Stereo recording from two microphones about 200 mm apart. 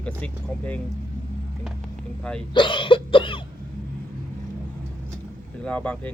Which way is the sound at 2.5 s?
25° left (ahead or behind).